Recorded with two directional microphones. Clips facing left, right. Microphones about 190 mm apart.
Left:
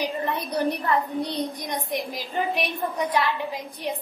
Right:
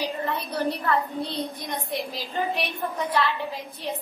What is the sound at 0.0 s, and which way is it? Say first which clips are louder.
A woman's voice: left 1 dB; 15° left (ahead or behind).